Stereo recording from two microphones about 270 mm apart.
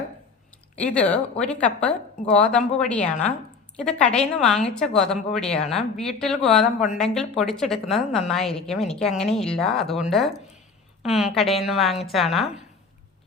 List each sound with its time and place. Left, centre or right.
0.8 s a woman's voice: centre
6.7 s speech: left
7.0 s a woman's voice: centre